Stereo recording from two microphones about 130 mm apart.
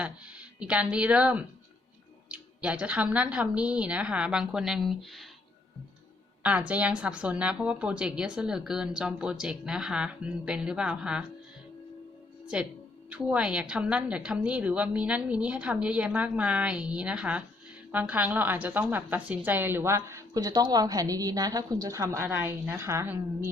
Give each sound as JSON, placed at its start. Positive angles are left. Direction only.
{"t": 0.0, "sound": "a woman's voice", "side_deg": -10}
{"t": 6.4, "sound": "a woman's voice", "side_deg": -10}
{"t": 12.5, "sound": "a woman's voice", "side_deg": -5}